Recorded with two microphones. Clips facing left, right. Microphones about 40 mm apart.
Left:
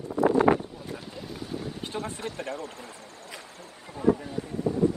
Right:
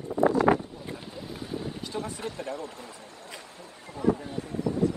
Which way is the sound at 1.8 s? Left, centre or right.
Left.